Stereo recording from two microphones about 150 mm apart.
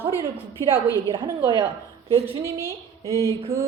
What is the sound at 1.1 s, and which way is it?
Speech, 30° right (ahead or behind).